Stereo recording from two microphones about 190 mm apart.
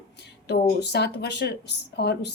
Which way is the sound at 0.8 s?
60° left (ahead or behind).